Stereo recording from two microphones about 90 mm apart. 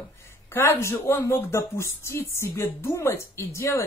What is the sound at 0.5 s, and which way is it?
A woman's voice, 25° left (ahead or behind).